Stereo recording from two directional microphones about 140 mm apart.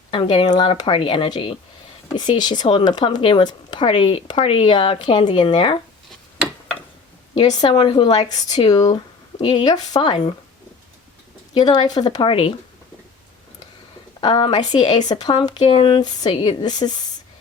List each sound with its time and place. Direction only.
0.1 s speech: 40° left (ahead or behind)
7.3 s speech: 35° left (ahead or behind)
11.5 s a woman's voice: 30° left (ahead or behind)
14.2 s speech: 40° left (ahead or behind)
15.5 s speech: 45° left (ahead or behind); by 16.9 s 30° left (ahead or behind)